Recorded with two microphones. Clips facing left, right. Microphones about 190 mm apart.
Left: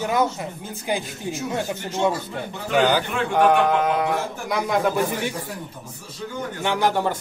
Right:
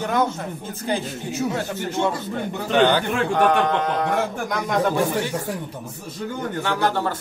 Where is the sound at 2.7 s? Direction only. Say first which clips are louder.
Right 2 dB; 5° left (ahead or behind).